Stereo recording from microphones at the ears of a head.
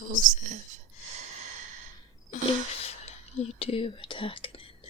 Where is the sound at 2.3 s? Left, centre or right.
Left.